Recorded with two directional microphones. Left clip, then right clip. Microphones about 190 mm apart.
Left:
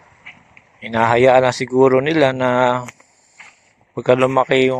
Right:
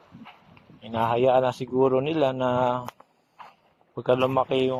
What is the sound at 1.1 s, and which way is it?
Speech, 60° left (ahead or behind).